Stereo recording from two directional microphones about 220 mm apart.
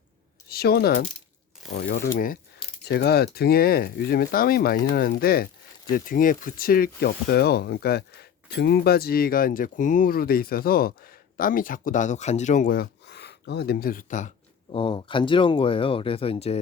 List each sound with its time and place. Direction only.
0.4 s speech: 45° left (ahead or behind); by 16.6 s 25° left (ahead or behind)